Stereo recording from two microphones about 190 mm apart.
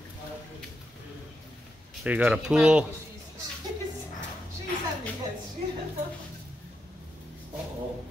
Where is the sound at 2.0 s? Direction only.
5° right (ahead or behind).